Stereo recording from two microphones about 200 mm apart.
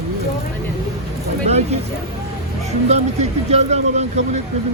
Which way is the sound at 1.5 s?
35° right (ahead or behind).